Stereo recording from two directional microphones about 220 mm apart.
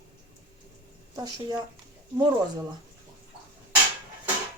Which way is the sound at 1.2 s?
20° right (ahead or behind).